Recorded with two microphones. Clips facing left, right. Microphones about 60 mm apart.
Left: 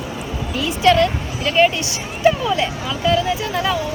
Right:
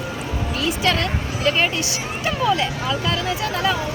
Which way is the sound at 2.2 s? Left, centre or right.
Centre.